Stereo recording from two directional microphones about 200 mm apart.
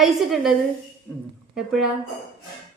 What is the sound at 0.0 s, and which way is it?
Speech, centre (ahead or behind).